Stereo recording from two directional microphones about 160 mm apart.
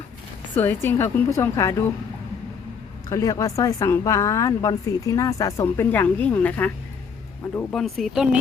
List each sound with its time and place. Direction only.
0.5 s a woman's voice: 15° left (ahead or behind)
3.1 s speech: 20° left (ahead or behind); by 8.4 s 5° right (ahead or behind)